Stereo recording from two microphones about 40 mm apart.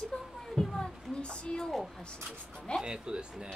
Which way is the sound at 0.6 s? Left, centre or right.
Left.